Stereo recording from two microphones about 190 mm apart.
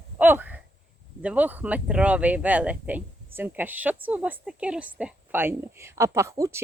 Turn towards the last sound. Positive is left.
turn(degrees=-15)  # may be behind; listen again after turning